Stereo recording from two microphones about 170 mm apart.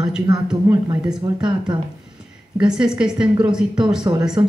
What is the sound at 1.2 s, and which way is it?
Speech, 25° right (ahead or behind).